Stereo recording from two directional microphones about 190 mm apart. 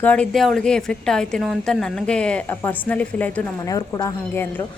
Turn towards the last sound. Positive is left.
turn(degrees=20)  # may be behind; listen again after turning